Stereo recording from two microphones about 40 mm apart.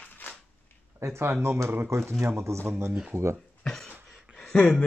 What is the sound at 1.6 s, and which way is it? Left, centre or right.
Speech, right.